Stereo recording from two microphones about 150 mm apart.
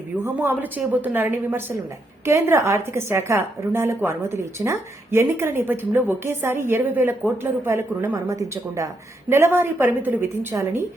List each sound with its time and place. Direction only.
0.3 s speech: 15° right (ahead or behind)